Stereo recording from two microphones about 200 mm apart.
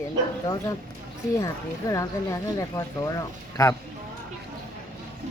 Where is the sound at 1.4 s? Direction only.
15° left (ahead or behind).